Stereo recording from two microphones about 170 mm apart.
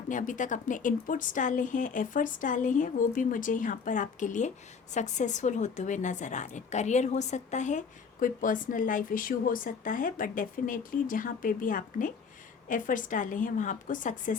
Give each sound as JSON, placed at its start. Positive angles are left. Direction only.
{"t": 0.1, "sound": "a woman's voice", "side_deg": 50}